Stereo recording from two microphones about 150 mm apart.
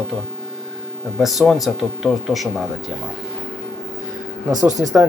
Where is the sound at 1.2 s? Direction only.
Centre (ahead or behind).